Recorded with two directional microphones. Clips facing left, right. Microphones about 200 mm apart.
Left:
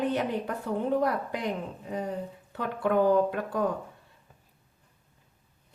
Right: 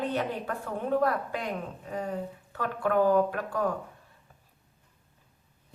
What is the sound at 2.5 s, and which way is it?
Speech, 20° left (ahead or behind).